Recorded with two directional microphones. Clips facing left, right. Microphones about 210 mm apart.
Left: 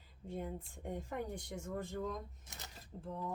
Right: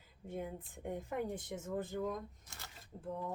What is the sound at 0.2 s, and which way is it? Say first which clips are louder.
Speech: even; 10° right (ahead or behind).